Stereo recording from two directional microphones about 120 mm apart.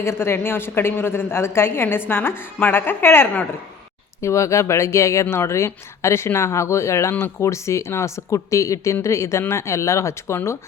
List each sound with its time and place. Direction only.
0.0 s a woman's voice: 20° left (ahead or behind)